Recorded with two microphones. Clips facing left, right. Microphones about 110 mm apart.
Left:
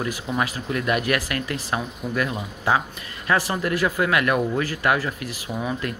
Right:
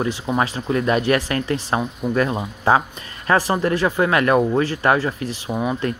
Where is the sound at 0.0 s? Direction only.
30° right (ahead or behind).